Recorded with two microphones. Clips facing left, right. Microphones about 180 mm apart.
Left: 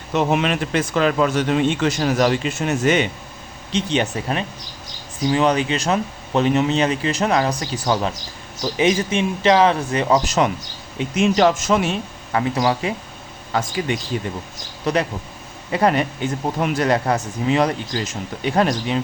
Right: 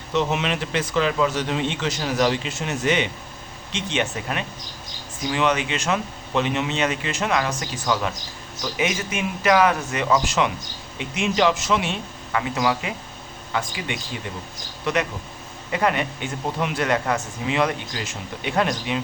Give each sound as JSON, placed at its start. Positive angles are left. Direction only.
{"t": 0.1, "sound": "speech", "side_deg": 50}
{"t": 3.7, "sound": "speech", "side_deg": 35}